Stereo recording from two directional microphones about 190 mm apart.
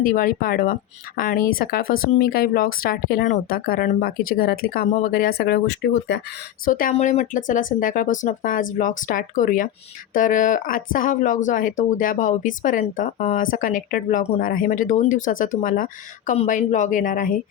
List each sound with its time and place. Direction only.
0.0 s speech: 45° left (ahead or behind); by 6.1 s 60° left (ahead or behind)
6.7 s speech: 45° left (ahead or behind)